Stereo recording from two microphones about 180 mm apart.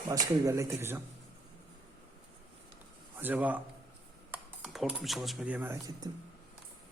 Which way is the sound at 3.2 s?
10° right (ahead or behind).